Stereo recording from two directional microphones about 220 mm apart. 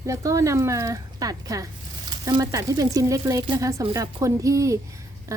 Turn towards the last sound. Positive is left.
turn(degrees=-15)  # may be behind; listen again after turning